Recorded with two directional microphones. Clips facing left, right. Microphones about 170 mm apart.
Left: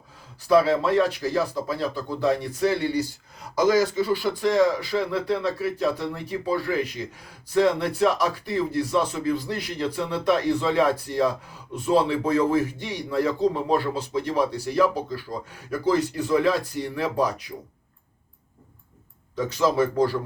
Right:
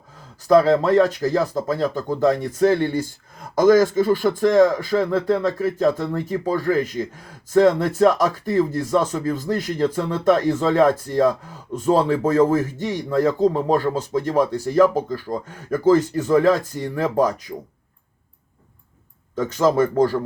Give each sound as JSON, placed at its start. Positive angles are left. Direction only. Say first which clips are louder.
{"t": 0.4, "sound": "speech", "louder": "right 4 dB", "side_deg": -45}
{"t": 19.4, "sound": "speech", "louder": "right 4 dB", "side_deg": -45}